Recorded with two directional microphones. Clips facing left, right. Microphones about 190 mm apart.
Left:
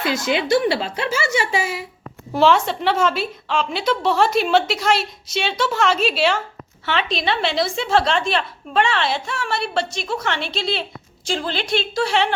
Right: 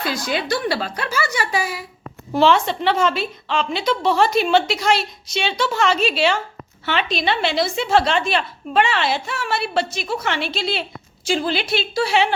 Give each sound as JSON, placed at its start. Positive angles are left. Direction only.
{"t": 0.0, "sound": "a woman's voice", "side_deg": 20}
{"t": 2.3, "sound": "a woman's voice", "side_deg": 5}